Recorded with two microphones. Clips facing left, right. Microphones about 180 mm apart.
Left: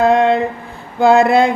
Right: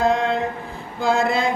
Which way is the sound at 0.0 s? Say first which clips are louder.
Left 7 dB; 65° left (ahead or behind).